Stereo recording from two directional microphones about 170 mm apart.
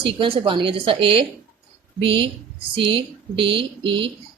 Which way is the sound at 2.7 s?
30° right (ahead or behind).